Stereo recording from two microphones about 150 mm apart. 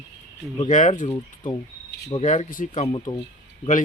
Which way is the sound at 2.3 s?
60° left (ahead or behind).